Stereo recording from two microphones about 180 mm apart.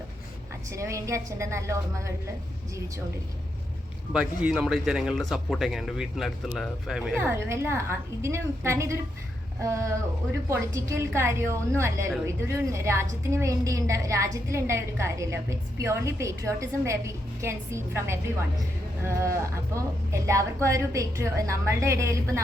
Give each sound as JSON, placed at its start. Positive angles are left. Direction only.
{"t": 0.7, "sound": "a woman's voice", "side_deg": -15}
{"t": 4.1, "sound": "a woman's voice", "side_deg": -5}
{"t": 19.7, "sound": "a woman's voice", "side_deg": -15}